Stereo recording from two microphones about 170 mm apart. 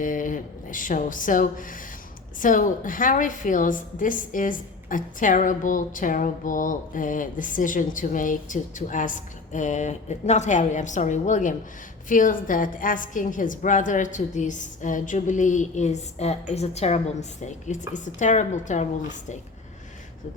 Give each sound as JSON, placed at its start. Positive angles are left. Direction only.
{"t": 0.0, "sound": "a woman's voice", "side_deg": 50}